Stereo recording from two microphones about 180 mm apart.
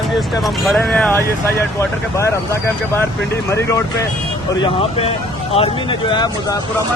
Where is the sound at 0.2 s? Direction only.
Centre (ahead or behind); by 3.8 s 15° left (ahead or behind).